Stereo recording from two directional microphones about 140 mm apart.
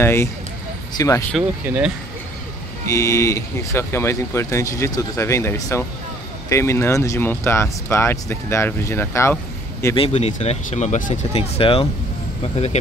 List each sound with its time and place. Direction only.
0.0 s speech: 20° left (ahead or behind)
2.9 s speech: 25° left (ahead or behind)
9.9 s speech: 45° left (ahead or behind); by 11.1 s 60° left (ahead or behind)
11.3 s speech: 45° left (ahead or behind)